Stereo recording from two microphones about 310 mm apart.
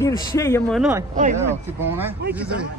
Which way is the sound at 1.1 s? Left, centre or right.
Right.